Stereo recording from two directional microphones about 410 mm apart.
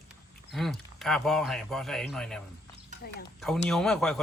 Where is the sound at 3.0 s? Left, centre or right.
Left.